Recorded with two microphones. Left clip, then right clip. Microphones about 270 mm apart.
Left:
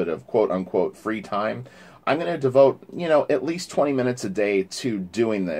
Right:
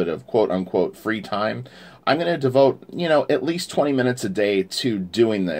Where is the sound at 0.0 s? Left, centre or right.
Right.